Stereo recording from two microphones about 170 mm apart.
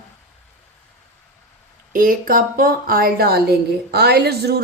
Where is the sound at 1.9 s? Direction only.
55° right (ahead or behind).